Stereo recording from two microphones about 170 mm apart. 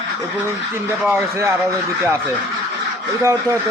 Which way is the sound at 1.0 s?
10° right (ahead or behind).